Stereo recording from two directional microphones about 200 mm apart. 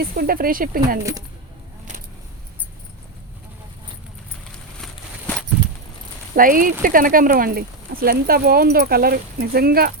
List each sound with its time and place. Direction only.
0.0 s speech: 50° right (ahead or behind)
6.3 s speech: 45° right (ahead or behind)